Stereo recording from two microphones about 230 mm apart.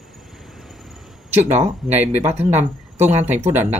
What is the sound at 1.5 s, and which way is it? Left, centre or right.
Speech, right.